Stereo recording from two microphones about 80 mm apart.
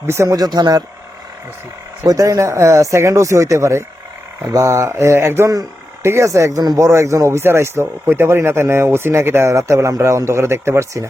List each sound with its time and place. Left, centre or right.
0.1 s speech: right
0.3 s speech: right
2.0 s speech: right